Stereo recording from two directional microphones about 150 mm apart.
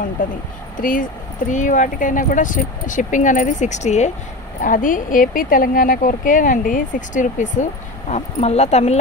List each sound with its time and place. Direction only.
0.7 s speech: 65° left (ahead or behind); by 4.1 s 50° left (ahead or behind)
4.6 s speech: 60° left (ahead or behind)
8.1 s speech: 45° left (ahead or behind)